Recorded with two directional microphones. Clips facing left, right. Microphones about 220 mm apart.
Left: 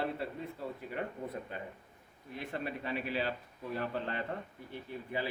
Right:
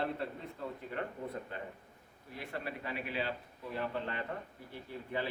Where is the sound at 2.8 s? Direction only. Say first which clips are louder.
Left 3 dB; 35° left (ahead or behind).